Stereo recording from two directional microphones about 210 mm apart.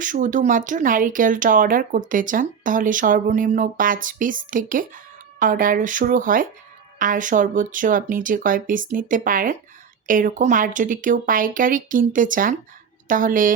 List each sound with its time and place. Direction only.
0.0 s speech: 40° right (ahead or behind)